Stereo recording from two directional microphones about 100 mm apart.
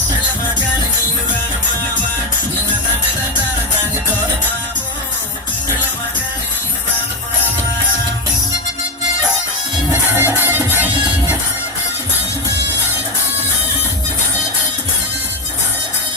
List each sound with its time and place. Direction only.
9.9 s music: 25° right (ahead or behind)